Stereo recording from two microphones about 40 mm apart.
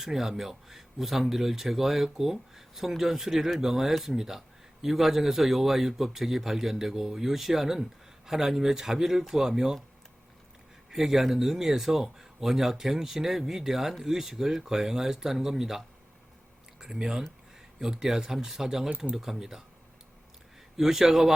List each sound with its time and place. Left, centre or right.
0.0 s speech: centre
10.9 s speech: centre
16.8 s speech: centre
20.7 s speech: centre